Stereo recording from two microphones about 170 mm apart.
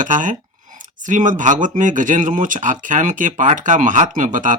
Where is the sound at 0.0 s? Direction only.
50° right (ahead or behind).